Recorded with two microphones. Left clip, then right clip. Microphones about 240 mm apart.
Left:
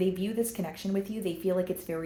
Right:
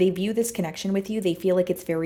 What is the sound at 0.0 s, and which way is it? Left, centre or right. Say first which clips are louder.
Speech: right 7 dB; right.